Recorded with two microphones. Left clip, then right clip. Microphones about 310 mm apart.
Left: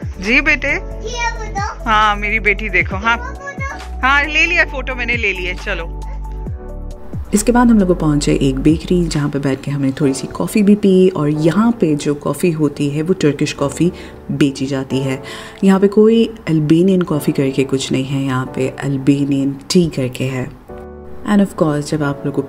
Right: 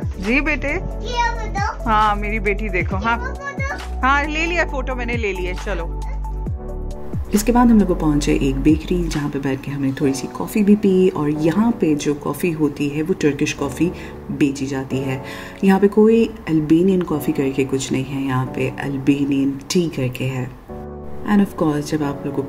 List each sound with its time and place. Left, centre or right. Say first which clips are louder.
0.2 s a child's voice: left 6 dB; centre
7.2 s speech: left 3 dB; centre